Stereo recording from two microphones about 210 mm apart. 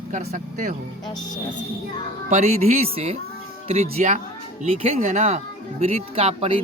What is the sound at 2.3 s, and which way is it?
Speech, 30° right (ahead or behind).